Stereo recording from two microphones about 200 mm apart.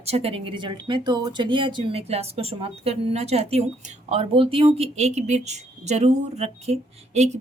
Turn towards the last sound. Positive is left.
turn(degrees=-35)  # may be behind; listen again after turning